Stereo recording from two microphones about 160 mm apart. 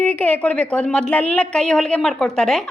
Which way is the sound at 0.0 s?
10° left (ahead or behind).